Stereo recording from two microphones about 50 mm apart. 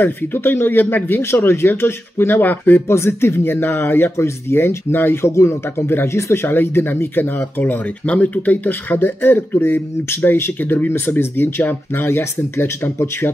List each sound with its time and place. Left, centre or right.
0.0 s speech: left
1.2 s speech: left
2.4 s speech: left
3.1 s speech: left
5.2 s speech: left
6.0 s speech: left
7.5 s speech: left
8.8 s speech: left
10.2 s speech: left